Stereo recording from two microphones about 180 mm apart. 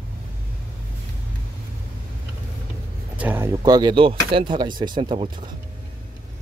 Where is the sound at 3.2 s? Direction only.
10° right (ahead or behind).